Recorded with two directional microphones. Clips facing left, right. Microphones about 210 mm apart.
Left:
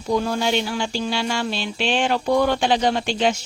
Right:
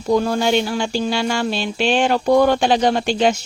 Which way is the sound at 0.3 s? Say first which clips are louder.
Right 4 dB; 45° right (ahead or behind).